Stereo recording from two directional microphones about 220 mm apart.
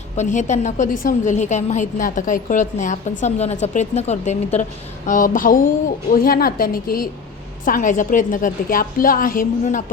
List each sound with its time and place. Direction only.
0.2 s a woman's voice: 35° left (ahead or behind)